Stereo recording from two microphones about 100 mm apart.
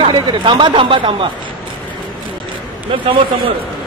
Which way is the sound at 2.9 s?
60° right (ahead or behind).